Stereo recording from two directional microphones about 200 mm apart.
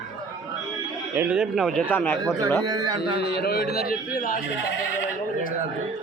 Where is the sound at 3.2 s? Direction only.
55° left (ahead or behind).